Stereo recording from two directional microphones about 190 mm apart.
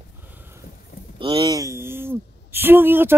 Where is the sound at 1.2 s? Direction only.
25° right (ahead or behind).